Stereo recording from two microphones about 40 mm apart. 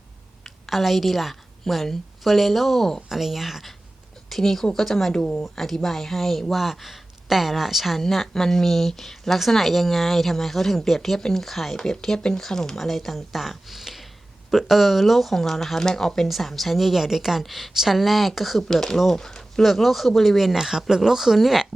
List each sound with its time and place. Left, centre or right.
0.4 s a woman's voice: centre
3.1 s speech: centre
5.1 s speech: left
5.4 s speech: centre
8.3 s speech: centre
18.7 s speech: centre